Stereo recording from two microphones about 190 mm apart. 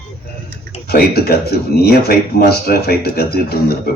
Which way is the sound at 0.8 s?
55° left (ahead or behind).